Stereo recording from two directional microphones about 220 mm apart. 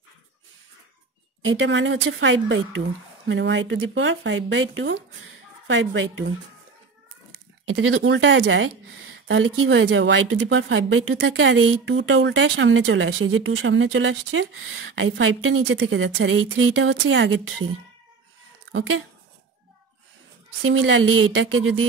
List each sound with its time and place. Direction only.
1.4 s speech: 60° right (ahead or behind)
7.6 s speech: 65° right (ahead or behind)
15.8 s speech: 55° right (ahead or behind)
20.6 s speech: 65° right (ahead or behind)